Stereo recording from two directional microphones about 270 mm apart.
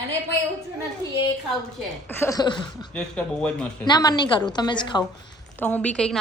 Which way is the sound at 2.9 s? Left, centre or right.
Centre.